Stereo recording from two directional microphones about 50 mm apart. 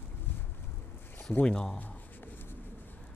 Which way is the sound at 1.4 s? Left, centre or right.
Centre.